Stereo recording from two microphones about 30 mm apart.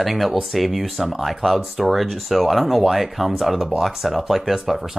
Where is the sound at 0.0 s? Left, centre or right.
Centre.